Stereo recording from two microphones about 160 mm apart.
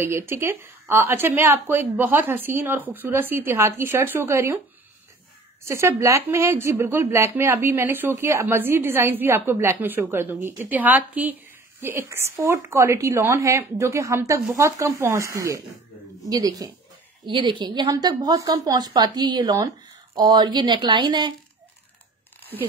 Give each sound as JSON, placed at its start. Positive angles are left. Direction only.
{"t": 0.0, "sound": "speech", "side_deg": -15}
{"t": 5.7, "sound": "a woman's voice", "side_deg": -15}